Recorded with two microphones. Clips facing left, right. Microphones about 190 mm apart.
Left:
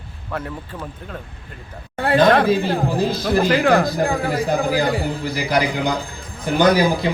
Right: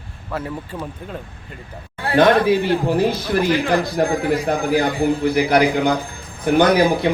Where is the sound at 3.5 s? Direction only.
55° left (ahead or behind).